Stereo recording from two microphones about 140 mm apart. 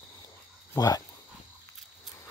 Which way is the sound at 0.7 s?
25° left (ahead or behind).